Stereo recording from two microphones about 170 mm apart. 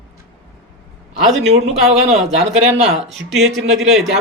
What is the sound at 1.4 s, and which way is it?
Speech, 40° right (ahead or behind).